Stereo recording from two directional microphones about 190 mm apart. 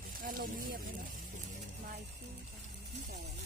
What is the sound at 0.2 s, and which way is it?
Speech, 50° right (ahead or behind).